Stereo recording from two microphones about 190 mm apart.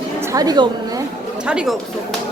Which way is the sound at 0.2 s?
15° right (ahead or behind).